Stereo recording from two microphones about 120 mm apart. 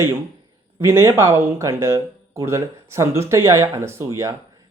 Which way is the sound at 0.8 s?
20° right (ahead or behind).